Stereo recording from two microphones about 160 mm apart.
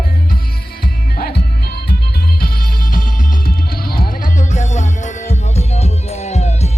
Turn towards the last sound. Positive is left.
turn(degrees=45)  # may be behind; listen again after turning